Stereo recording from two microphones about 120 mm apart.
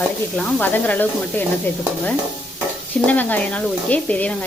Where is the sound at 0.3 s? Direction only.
10° left (ahead or behind).